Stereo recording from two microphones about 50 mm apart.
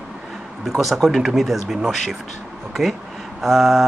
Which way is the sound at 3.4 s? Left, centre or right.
Centre.